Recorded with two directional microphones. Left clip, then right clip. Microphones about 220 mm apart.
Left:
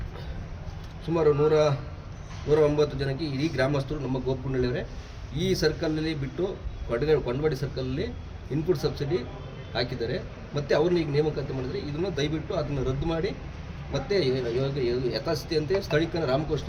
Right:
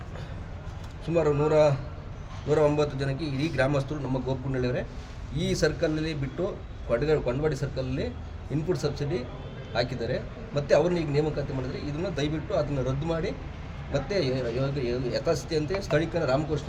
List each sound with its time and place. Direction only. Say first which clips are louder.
1.1 s a man's voice: left 1 dB; 5° right (ahead or behind)